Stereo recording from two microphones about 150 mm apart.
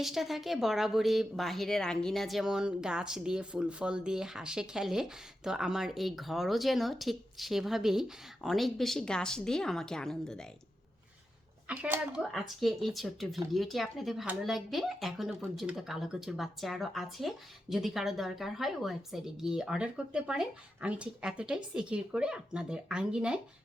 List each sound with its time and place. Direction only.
0.0 s speech: centre (ahead or behind)
11.7 s speech: 10° right (ahead or behind)